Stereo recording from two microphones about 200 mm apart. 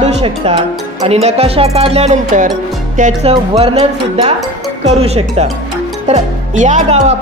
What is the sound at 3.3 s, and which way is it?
Speech, 25° right (ahead or behind).